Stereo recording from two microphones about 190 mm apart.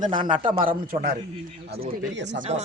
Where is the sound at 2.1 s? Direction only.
70° right (ahead or behind).